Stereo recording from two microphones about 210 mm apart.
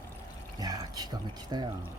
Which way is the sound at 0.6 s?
20° right (ahead or behind).